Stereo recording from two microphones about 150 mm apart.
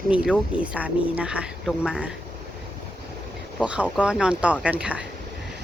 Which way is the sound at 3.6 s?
10° right (ahead or behind).